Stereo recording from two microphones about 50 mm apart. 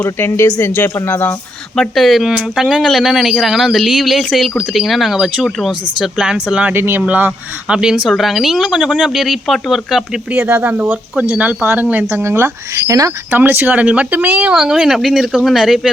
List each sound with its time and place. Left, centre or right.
0.2 s speech: left
1.0 s speech: left
1.7 s speech: centre
2.0 s speech: centre
5.6 s speech: centre
6.7 s speech: right
7.1 s speech: right
7.7 s speech: centre
8.1 s speech: centre
10.6 s speech: right
12.7 s speech: right
13.3 s speech: right
13.8 s speech: right
14.5 s speech: centre